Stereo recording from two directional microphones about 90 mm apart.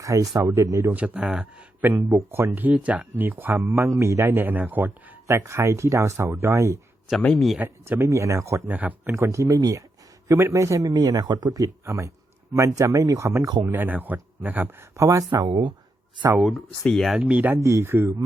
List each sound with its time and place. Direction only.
0.0 s speech: 35° right (ahead or behind)
0.9 s speech: 15° right (ahead or behind)
1.8 s speech: 20° right (ahead or behind)
7.3 s speech: centre (ahead or behind)
7.6 s speech: 25° right (ahead or behind)
8.7 s speech: 20° right (ahead or behind)
9.1 s speech: 35° right (ahead or behind)
10.9 s speech: 50° right (ahead or behind)
13.6 s speech: 20° right (ahead or behind)
14.9 s speech: 35° right (ahead or behind)
15.3 s speech: 50° right (ahead or behind)
16.4 s speech: centre (ahead or behind)
17.2 s speech: 15° right (ahead or behind)
17.6 s speech: 30° right (ahead or behind)